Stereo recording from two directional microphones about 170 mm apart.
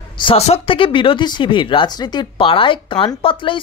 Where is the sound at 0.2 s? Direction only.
35° left (ahead or behind).